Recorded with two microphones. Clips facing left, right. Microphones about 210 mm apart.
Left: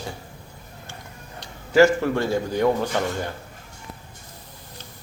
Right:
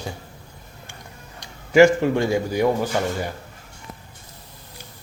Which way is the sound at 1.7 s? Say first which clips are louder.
Right 2 dB; 15° right (ahead or behind).